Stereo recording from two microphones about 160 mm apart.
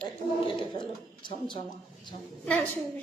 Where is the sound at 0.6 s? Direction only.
30° left (ahead or behind).